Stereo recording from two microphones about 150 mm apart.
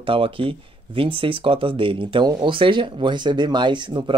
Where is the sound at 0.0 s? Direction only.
35° right (ahead or behind).